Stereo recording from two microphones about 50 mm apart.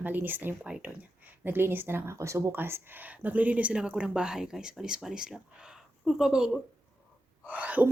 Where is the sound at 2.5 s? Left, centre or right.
Right.